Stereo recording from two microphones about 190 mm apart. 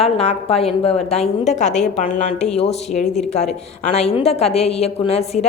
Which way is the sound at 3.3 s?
35° left (ahead or behind).